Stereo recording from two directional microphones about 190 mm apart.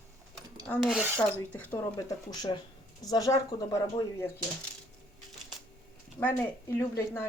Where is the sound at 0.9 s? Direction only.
10° right (ahead or behind).